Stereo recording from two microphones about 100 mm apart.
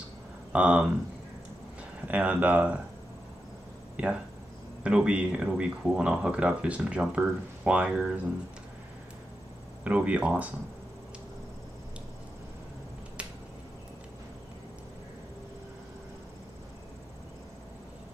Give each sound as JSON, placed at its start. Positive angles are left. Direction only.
{"t": 0.5, "sound": "speech", "side_deg": -10}
{"t": 2.0, "sound": "speech", "side_deg": -15}
{"t": 3.9, "sound": "a sound", "side_deg": -10}
{"t": 4.8, "sound": "speech", "side_deg": -10}
{"t": 9.8, "sound": "speech", "side_deg": -15}